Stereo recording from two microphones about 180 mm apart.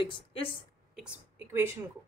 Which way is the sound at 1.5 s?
15° right (ahead or behind).